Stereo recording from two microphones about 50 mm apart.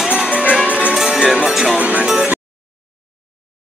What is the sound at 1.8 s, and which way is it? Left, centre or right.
Speech, right.